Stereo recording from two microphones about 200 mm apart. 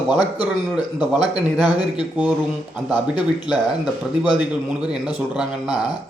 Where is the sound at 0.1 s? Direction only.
20° left (ahead or behind).